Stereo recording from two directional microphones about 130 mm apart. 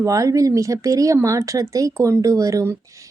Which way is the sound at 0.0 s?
25° right (ahead or behind).